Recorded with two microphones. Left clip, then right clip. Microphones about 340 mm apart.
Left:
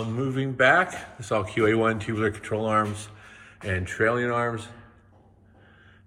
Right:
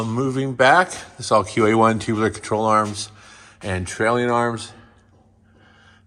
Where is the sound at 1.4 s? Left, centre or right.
Right.